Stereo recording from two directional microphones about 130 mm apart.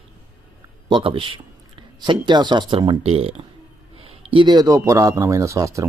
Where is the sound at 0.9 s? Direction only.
40° right (ahead or behind).